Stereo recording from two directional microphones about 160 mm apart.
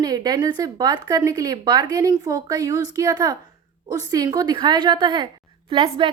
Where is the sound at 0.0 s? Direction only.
25° right (ahead or behind).